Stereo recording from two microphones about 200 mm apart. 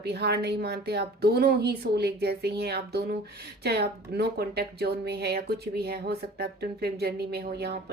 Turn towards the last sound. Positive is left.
turn(degrees=-55)  # may be behind; listen again after turning